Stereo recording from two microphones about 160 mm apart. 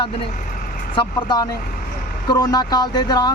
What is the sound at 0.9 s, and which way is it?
Speech, 25° left (ahead or behind).